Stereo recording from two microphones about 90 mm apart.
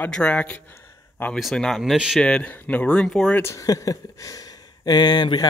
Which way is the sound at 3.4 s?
30° left (ahead or behind).